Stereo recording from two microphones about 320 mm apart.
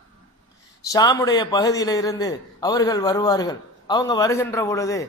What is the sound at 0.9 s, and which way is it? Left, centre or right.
A man's voice, centre.